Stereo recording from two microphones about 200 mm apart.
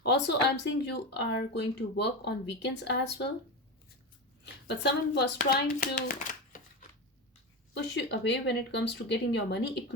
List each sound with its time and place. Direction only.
0.0 s speech: 60° left (ahead or behind)
4.4 s a woman's voice: 55° left (ahead or behind)
5.4 s a child's voice: 45° left (ahead or behind)
7.7 s speech: 60° left (ahead or behind)